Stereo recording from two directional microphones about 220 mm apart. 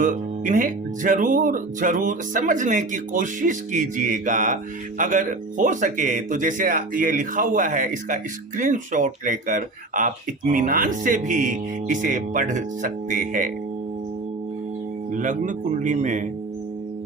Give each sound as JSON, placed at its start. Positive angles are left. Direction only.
{"t": 0.0, "sound": "speech", "side_deg": -35}
{"t": 15.1, "sound": "speech", "side_deg": -35}